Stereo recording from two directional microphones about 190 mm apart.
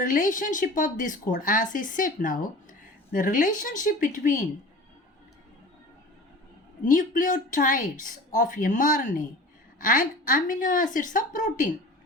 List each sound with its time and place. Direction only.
0.0 s speech: 45° left (ahead or behind)
6.8 s speech: 45° left (ahead or behind)